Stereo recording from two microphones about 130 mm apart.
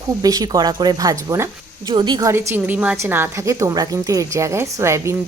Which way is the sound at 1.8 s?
35° right (ahead or behind).